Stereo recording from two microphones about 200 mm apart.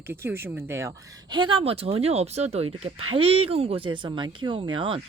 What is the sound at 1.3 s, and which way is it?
Speech, 25° right (ahead or behind).